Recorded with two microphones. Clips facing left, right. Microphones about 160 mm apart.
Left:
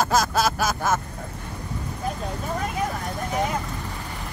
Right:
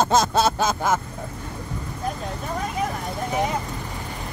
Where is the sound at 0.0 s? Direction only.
25° right (ahead or behind).